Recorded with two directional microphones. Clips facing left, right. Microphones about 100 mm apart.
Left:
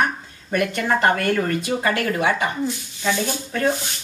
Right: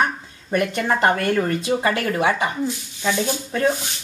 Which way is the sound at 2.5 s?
10° right (ahead or behind).